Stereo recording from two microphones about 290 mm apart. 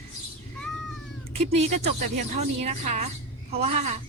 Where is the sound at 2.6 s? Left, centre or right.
Right.